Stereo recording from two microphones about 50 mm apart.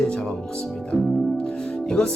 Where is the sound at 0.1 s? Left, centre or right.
Centre.